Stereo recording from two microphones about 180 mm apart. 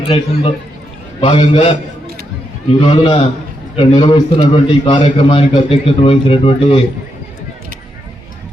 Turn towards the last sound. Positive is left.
turn(degrees=30)  # may be behind; listen again after turning